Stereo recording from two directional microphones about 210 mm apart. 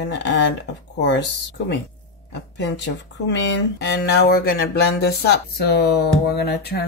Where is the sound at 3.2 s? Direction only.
60° left (ahead or behind).